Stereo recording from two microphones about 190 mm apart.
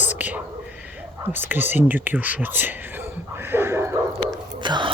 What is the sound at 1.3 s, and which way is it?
Speech, 10° right (ahead or behind).